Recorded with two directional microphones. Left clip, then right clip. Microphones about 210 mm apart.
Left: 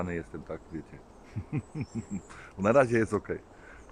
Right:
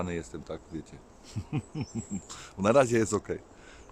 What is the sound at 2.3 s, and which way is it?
Speech, 15° right (ahead or behind).